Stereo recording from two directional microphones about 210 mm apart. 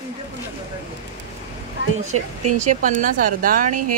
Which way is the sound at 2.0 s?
35° right (ahead or behind).